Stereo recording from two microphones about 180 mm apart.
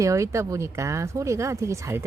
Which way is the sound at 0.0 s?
15° right (ahead or behind).